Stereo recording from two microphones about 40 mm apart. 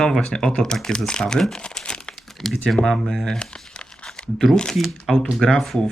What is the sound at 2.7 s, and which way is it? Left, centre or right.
Crumpling, centre.